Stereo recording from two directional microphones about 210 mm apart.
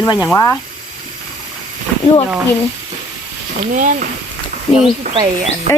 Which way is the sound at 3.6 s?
35° right (ahead or behind).